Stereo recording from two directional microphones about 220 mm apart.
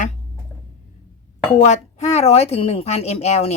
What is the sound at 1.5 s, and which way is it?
Speech, 30° left (ahead or behind).